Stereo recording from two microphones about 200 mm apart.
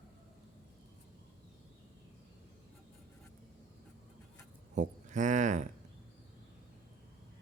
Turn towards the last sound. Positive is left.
turn(degrees=-40)  # may be behind; listen again after turning